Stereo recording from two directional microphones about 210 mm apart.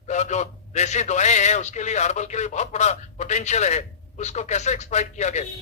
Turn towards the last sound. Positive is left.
turn(degrees=35)  # may be behind; listen again after turning